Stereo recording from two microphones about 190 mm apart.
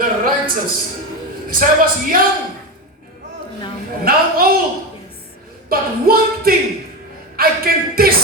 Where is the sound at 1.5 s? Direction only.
45° right (ahead or behind).